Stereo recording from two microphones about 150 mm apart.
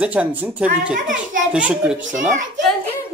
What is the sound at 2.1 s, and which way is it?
Speech, 55° right (ahead or behind).